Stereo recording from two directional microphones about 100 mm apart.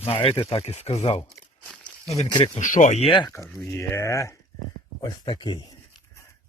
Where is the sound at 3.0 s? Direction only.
65° left (ahead or behind).